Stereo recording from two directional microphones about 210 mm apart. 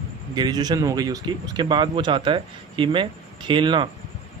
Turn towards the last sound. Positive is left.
turn(degrees=-25)  # may be behind; listen again after turning